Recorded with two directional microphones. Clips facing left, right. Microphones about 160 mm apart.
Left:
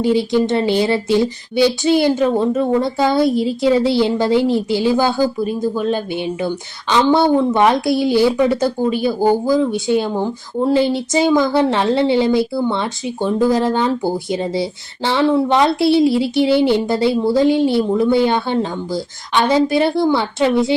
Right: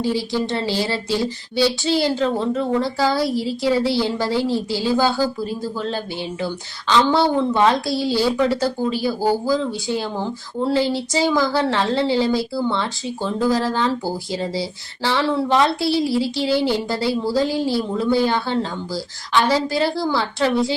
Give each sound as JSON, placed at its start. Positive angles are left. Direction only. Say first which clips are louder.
{"t": 0.0, "sound": "speech", "louder": "left 6 dB", "side_deg": 20}